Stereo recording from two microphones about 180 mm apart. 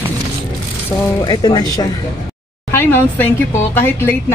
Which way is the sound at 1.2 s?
25° left (ahead or behind).